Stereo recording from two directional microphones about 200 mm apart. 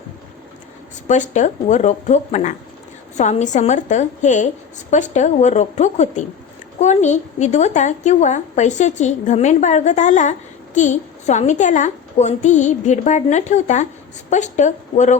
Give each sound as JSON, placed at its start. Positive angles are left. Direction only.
{"t": 1.0, "sound": "a woman's voice", "side_deg": 35}